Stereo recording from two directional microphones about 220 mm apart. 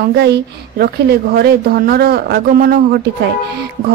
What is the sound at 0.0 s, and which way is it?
A woman's voice, 50° right (ahead or behind).